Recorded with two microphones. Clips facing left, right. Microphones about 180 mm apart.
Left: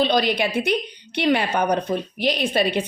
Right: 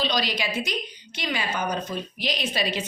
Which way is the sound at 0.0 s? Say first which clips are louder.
Left 7 dB; 55° left (ahead or behind).